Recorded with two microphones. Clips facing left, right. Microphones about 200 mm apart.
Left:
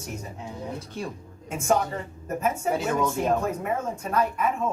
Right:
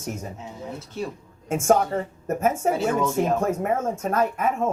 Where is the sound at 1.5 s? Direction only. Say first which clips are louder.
Right 5 dB; 45° right (ahead or behind).